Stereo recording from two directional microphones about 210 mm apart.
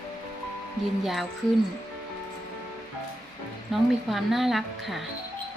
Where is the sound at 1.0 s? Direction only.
Centre (ahead or behind).